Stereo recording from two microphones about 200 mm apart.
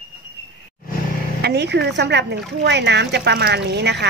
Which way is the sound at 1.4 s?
55° right (ahead or behind).